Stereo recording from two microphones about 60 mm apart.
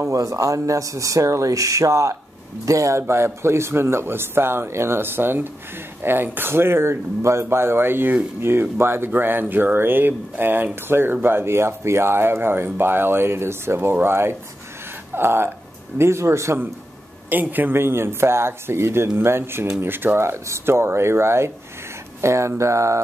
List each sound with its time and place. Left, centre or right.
0.0 s a man's voice: right
17.3 s a man's voice: right
20.2 s a man's voice: right